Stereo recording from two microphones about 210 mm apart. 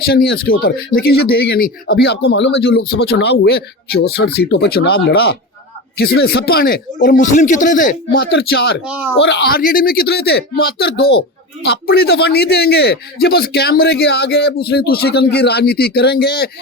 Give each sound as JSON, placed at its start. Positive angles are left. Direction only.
{"t": 0.0, "sound": "speech", "side_deg": 50}
{"t": 8.8, "sound": "speech", "side_deg": -5}
{"t": 9.1, "sound": "speech", "side_deg": 55}